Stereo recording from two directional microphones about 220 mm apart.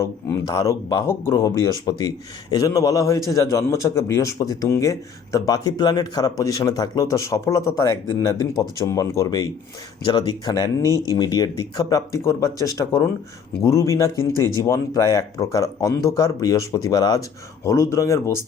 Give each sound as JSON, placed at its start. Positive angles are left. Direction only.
{"t": 0.0, "sound": "speech", "side_deg": 15}